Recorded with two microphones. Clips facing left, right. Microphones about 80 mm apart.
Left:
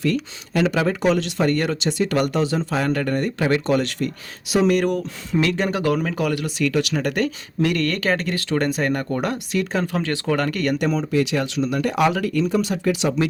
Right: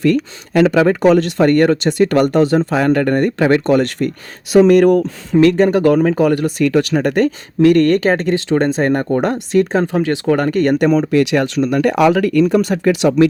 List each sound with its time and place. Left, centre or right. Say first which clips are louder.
0.0 s speech: right 8 dB; right
7.9 s speech: right 9 dB; right
9.9 s speech: right 7 dB; centre
10.8 s speech: right 9 dB; right
11.1 s speech: right 7 dB; right